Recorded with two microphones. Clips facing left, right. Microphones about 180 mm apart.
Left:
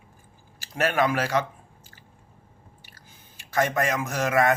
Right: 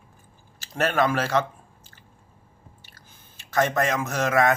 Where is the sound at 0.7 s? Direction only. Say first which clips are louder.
Right 1 dB; 10° left (ahead or behind).